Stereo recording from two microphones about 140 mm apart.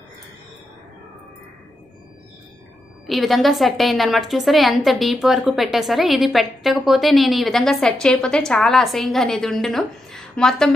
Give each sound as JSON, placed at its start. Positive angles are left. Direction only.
{"t": 3.1, "sound": "a woman's voice", "side_deg": 0}